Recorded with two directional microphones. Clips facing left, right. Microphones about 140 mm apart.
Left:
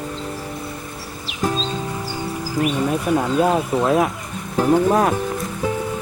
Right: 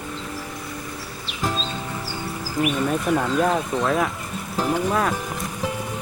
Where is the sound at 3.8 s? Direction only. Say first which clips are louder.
Left 5 dB; 25° left (ahead or behind).